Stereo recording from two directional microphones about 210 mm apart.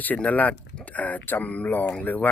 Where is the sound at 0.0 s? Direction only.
5° left (ahead or behind).